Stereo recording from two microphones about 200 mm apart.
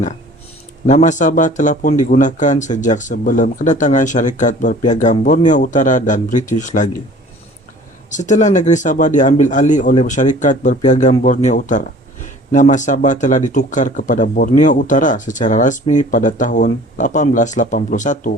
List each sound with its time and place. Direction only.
0.9 s speech: 40° left (ahead or behind)
8.1 s speech: 40° left (ahead or behind)